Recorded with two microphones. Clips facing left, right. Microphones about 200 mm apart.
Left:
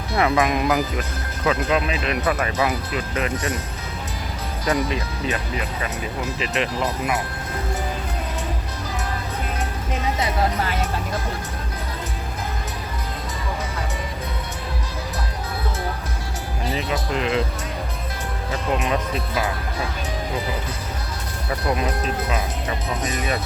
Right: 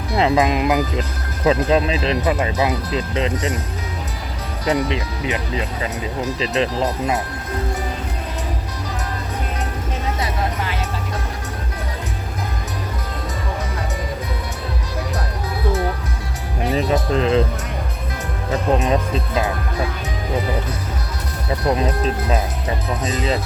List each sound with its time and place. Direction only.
0.2 s speech: 25° right (ahead or behind)
4.6 s speech: 25° right (ahead or behind)
16.7 s speech: 30° right (ahead or behind)
18.5 s speech: 30° right (ahead or behind)
23.1 s speech: 30° right (ahead or behind)